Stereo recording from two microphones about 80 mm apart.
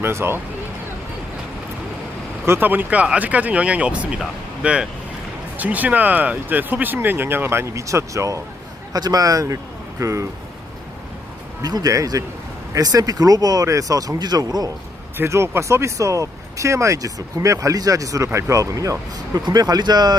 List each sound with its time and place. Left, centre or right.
0.0 s speech: right
2.5 s speech: right
8.9 s speech: right
11.6 s speech: right
15.2 s speech: right